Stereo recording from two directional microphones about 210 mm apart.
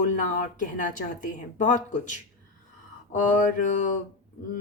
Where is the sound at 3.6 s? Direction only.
35° left (ahead or behind).